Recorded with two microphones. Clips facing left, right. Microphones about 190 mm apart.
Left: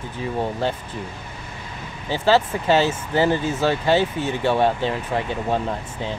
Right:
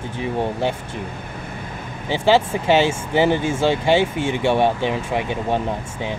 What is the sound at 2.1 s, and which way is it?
Speech, 15° right (ahead or behind).